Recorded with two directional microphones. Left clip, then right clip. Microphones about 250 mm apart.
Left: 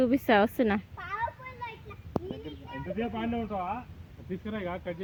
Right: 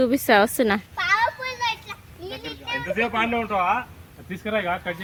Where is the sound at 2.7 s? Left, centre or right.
Centre.